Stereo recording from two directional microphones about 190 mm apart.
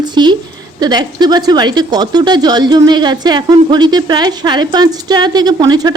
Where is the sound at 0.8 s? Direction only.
20° right (ahead or behind).